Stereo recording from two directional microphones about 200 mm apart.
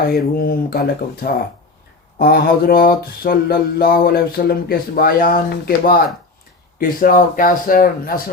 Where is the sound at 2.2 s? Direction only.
50° left (ahead or behind).